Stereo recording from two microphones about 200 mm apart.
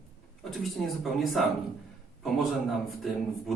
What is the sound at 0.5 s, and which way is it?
A man's voice, centre (ahead or behind).